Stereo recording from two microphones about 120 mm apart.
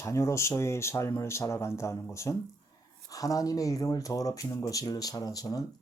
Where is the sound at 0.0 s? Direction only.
25° left (ahead or behind).